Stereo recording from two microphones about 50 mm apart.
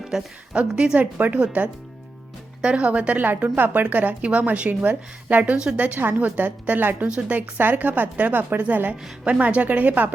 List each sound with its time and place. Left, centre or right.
0.1 s a woman's voice: centre
0.5 s a woman's voice: right
3.2 s a woman's voice: right
5.5 s a woman's voice: centre
6.0 s a woman's voice: right